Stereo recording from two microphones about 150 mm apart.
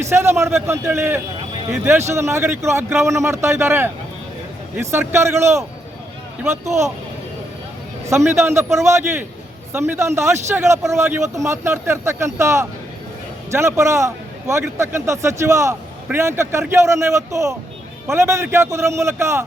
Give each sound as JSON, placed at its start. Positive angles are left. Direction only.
{"t": 0.1, "sound": "a man's voice", "side_deg": -15}
{"t": 8.0, "sound": "a man's voice", "side_deg": -20}